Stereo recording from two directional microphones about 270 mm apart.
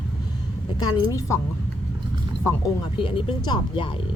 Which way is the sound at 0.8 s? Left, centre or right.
Centre.